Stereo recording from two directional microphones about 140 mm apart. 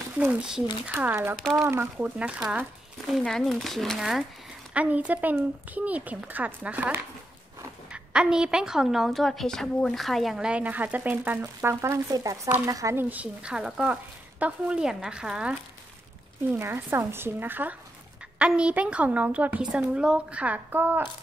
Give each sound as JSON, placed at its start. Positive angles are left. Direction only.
{"t": 0.2, "sound": "a woman's voice", "side_deg": -10}
{"t": 13.1, "sound": "a woman's voice", "side_deg": -10}
{"t": 16.5, "sound": "a woman's voice", "side_deg": -20}